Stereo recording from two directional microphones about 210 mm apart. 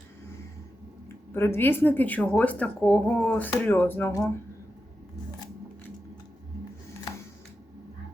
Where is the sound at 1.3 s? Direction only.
10° left (ahead or behind).